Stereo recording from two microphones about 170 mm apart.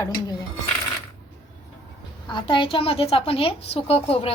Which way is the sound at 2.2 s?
30° left (ahead or behind).